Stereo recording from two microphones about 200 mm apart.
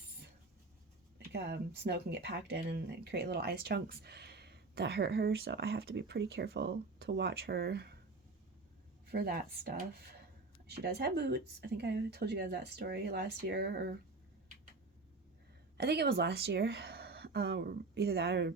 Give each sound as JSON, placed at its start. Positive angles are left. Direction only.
{"t": 1.3, "sound": "speech", "side_deg": -55}
{"t": 9.0, "sound": "speech", "side_deg": -50}
{"t": 15.8, "sound": "speech", "side_deg": -55}